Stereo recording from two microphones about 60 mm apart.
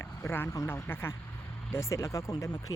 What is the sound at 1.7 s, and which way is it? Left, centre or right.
Speech, left.